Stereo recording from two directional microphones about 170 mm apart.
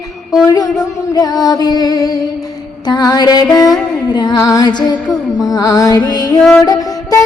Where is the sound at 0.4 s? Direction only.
20° left (ahead or behind).